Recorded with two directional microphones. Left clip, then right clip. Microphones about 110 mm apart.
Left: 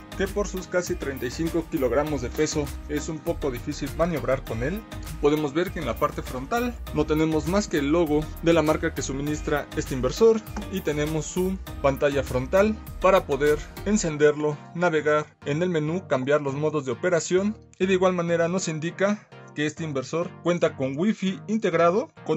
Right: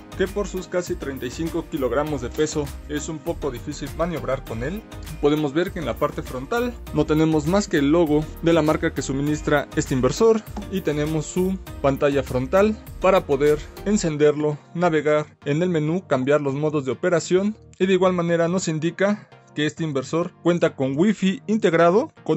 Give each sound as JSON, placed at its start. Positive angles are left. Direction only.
{"t": 0.4, "sound": "speech", "side_deg": -20}
{"t": 0.7, "sound": "speech", "side_deg": 0}
{"t": 2.0, "sound": "speech", "side_deg": -30}
{"t": 2.6, "sound": "speech", "side_deg": 0}
{"t": 5.2, "sound": "speech", "side_deg": -30}
{"t": 7.1, "sound": "speech", "side_deg": -65}
{"t": 9.4, "sound": "speech", "side_deg": -80}
{"t": 10.7, "sound": "speech", "side_deg": -35}
{"t": 20.9, "sound": "speech", "side_deg": -90}